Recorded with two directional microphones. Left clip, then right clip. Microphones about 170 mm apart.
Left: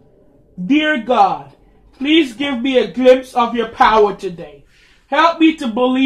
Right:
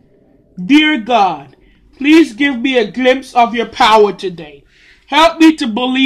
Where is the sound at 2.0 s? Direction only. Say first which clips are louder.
Right 5 dB; 30° right (ahead or behind).